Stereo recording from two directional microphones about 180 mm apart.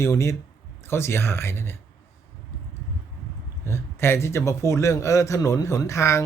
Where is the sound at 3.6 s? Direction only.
15° left (ahead or behind).